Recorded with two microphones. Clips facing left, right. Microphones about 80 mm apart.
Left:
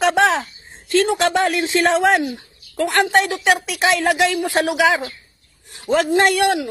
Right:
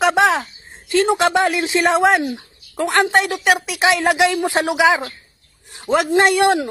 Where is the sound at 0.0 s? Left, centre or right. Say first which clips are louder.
Right 1 dB; centre.